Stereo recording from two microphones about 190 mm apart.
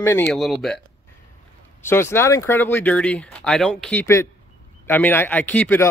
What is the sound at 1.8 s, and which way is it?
Speech, 10° left (ahead or behind).